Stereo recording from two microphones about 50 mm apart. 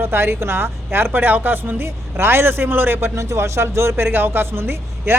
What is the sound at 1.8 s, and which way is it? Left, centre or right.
Speech, right.